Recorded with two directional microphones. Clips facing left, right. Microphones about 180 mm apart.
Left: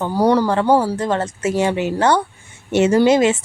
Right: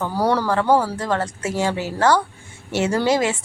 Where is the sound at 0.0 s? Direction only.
15° left (ahead or behind).